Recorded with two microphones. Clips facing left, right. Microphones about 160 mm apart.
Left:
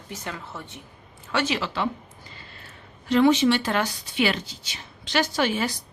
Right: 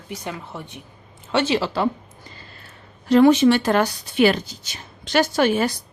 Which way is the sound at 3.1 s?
45° right (ahead or behind).